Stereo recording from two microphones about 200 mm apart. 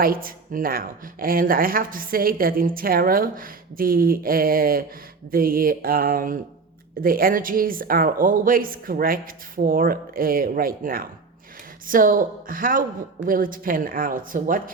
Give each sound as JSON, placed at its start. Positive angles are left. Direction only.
{"t": 0.0, "sound": "speech", "side_deg": -45}